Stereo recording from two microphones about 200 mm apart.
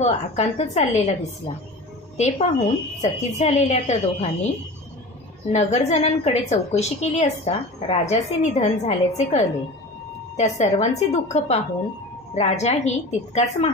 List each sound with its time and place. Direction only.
0.0 s a woman's voice: 35° left (ahead or behind)
5.5 s a woman's voice: 35° left (ahead or behind)